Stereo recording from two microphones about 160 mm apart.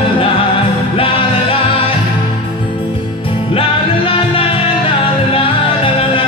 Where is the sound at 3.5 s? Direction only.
35° left (ahead or behind).